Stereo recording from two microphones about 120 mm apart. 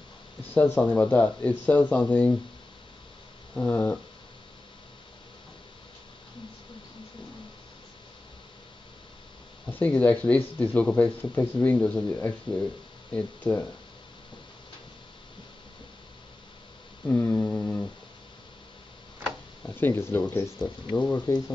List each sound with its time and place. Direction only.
0.6 s speech: 10° left (ahead or behind)
3.5 s speech: 15° left (ahead or behind)
9.7 s speech: 15° left (ahead or behind)
17.0 s mantra: 15° left (ahead or behind)
19.6 s speech: 15° left (ahead or behind)
20.9 s speech: 35° left (ahead or behind)